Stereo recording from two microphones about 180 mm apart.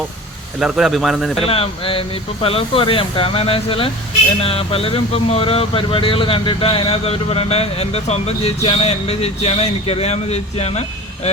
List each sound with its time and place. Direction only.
0.6 s speech: 5° right (ahead or behind)
1.5 s speech: 30° left (ahead or behind)